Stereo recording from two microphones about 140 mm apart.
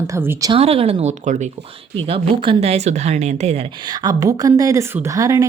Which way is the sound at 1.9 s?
40° right (ahead or behind).